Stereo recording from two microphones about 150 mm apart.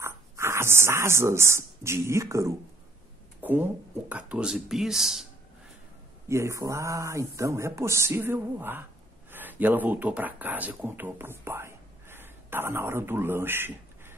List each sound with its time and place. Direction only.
0.0 s speech: 15° right (ahead or behind)
3.4 s a sound: 10° right (ahead or behind)
4.1 s speech: 10° right (ahead or behind)
6.2 s speech: 20° right (ahead or behind)